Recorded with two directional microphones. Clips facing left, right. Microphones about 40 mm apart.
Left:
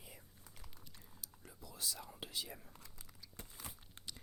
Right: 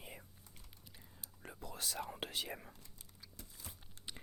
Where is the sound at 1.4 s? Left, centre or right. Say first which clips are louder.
Right 3 dB; right.